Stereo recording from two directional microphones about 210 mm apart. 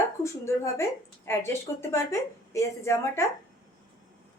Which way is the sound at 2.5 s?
15° left (ahead or behind).